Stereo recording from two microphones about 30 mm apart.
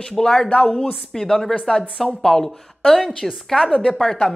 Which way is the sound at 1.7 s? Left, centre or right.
Left.